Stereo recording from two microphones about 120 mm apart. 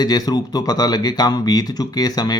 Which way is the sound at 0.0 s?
35° left (ahead or behind).